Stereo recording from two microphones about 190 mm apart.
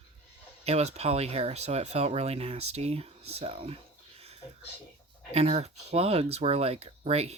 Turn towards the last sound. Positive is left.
turn(degrees=-35)  # may be behind; listen again after turning